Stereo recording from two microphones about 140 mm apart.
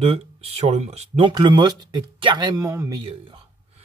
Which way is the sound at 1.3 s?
35° right (ahead or behind).